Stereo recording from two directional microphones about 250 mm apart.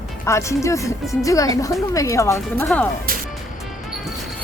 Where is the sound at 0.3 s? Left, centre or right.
Centre.